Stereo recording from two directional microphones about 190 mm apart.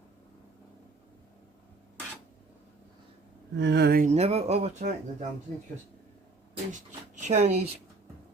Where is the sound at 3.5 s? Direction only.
65° right (ahead or behind).